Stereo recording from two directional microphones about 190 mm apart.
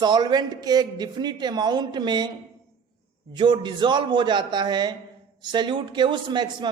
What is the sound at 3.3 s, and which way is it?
Speech, 25° right (ahead or behind).